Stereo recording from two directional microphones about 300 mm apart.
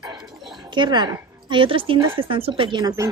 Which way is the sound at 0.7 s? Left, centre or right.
Centre.